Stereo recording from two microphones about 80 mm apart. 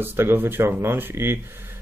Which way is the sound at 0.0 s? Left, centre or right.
Right.